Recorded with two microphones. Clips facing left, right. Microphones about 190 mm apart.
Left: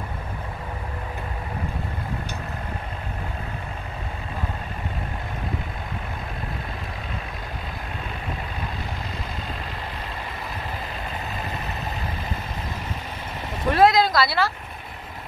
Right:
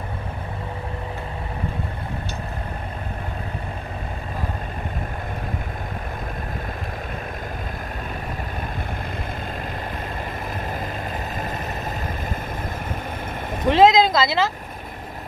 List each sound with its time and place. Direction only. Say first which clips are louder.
13.7 s speech: right 3 dB; 20° right (ahead or behind)